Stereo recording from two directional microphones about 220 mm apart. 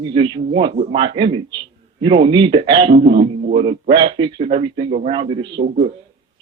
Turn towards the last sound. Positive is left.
turn(degrees=-20)  # may be behind; listen again after turning